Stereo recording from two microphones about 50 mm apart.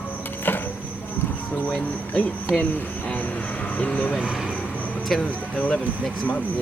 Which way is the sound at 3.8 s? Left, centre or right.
Left.